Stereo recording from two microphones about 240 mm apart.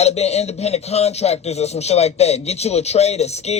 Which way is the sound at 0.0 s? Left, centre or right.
Left.